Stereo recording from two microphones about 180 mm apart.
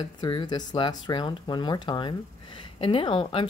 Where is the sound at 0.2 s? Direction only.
25° left (ahead or behind).